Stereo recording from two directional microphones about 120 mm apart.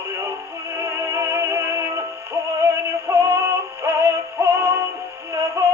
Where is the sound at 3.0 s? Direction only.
25° right (ahead or behind).